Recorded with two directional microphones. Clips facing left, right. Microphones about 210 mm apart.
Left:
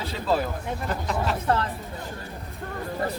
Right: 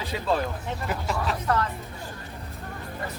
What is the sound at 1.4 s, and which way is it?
Speech, 30° left (ahead or behind).